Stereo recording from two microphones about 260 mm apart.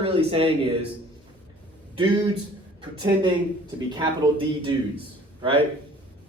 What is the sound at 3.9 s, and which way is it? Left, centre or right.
A man's voice, centre.